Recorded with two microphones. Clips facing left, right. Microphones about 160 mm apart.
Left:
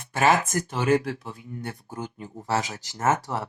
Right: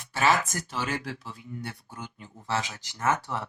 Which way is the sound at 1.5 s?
45° left (ahead or behind).